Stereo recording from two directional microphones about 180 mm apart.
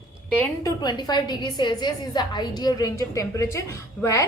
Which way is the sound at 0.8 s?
25° left (ahead or behind).